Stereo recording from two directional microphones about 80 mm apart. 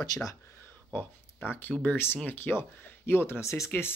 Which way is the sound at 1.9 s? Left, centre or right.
Left.